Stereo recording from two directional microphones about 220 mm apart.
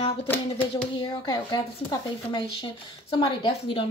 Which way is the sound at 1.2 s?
20° left (ahead or behind).